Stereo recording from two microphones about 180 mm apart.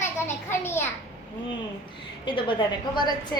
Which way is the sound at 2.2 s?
30° left (ahead or behind).